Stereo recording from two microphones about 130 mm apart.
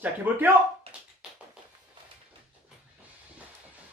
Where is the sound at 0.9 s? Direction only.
50° right (ahead or behind).